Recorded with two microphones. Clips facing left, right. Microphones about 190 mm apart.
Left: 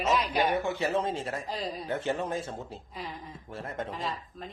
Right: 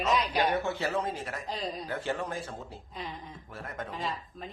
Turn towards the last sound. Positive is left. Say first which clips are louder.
# even
turn(degrees=0)  # may be behind; listen again after turning